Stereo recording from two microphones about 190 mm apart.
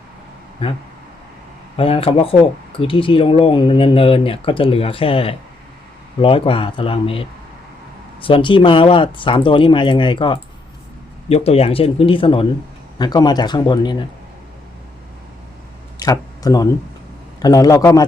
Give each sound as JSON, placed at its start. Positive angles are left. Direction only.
{"t": 0.6, "sound": "speech", "side_deg": 25}
{"t": 16.0, "sound": "a sound", "side_deg": 20}
{"t": 17.4, "sound": "speech", "side_deg": 20}